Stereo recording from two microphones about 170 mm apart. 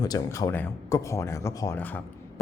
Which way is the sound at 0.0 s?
20° left (ahead or behind).